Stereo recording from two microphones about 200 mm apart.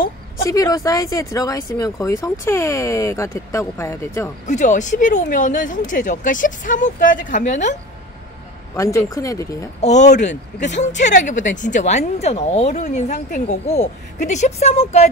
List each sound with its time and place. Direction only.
0.5 s speech: 15° left (ahead or behind)
4.5 s speech: 35° left (ahead or behind)
8.7 s speech: 15° left (ahead or behind)
9.8 s speech: 35° left (ahead or behind)